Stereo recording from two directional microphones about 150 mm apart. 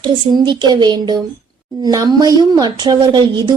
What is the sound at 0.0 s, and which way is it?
A woman's voice, 30° right (ahead or behind).